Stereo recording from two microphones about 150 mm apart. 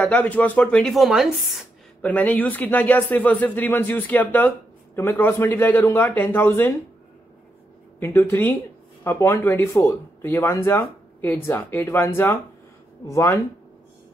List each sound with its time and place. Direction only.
0.0 s a woman's voice: 10° left (ahead or behind)
2.0 s speech: 10° left (ahead or behind)
8.0 s speech: 15° left (ahead or behind)